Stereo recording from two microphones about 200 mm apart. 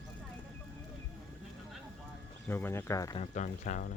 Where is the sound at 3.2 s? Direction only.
35° left (ahead or behind).